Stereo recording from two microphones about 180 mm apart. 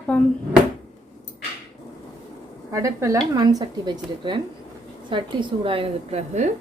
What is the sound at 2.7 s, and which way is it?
A woman's voice, 15° right (ahead or behind).